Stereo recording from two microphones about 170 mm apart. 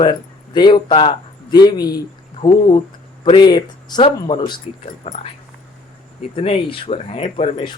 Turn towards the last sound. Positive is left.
turn(degrees=35)  # may be behind; listen again after turning